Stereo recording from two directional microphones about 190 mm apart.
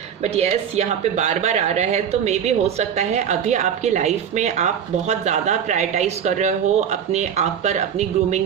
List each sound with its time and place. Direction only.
0.2 s speech: 35° right (ahead or behind)